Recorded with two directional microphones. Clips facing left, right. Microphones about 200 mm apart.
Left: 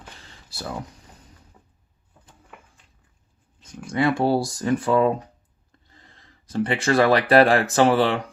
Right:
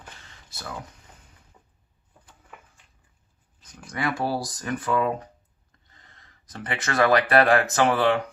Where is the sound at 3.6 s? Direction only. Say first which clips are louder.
Left 7 dB; 25° left (ahead or behind).